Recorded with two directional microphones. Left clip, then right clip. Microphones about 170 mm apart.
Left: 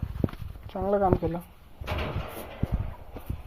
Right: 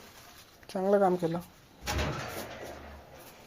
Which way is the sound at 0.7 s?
20° right (ahead or behind).